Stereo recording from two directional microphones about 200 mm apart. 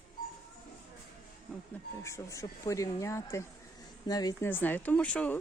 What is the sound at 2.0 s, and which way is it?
Speech, 15° left (ahead or behind).